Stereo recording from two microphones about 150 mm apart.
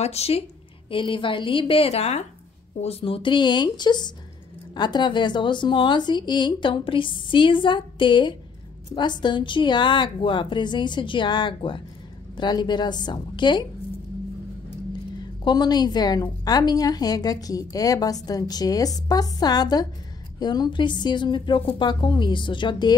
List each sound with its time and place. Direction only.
0.0 s a woman's voice: 45° left (ahead or behind)
15.4 s a woman's voice: 25° left (ahead or behind)